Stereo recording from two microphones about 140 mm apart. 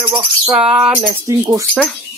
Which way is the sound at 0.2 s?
5° right (ahead or behind).